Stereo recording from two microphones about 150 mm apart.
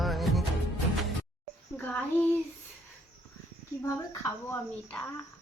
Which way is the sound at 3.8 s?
20° left (ahead or behind).